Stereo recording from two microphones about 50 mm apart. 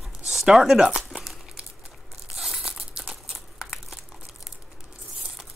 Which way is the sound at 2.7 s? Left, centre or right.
Centre.